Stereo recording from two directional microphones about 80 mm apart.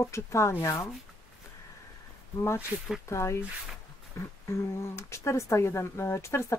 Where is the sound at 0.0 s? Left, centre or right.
Left.